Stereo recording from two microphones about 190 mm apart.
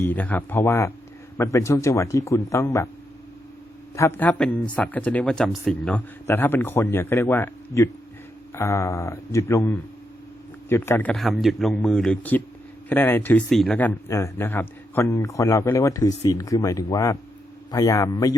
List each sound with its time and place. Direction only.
0.0 s speech: 10° left (ahead or behind)
3.9 s a man's voice: 15° left (ahead or behind)